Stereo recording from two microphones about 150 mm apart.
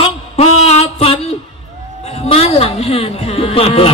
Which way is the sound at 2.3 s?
40° left (ahead or behind).